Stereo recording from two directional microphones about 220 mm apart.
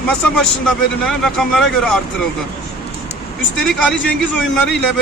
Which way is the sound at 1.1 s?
Centre (ahead or behind).